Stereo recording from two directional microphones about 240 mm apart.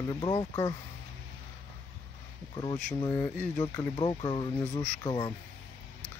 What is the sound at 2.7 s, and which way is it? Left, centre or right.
Speech, centre.